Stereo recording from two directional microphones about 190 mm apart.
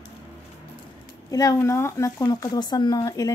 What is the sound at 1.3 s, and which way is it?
Speech, 15° left (ahead or behind).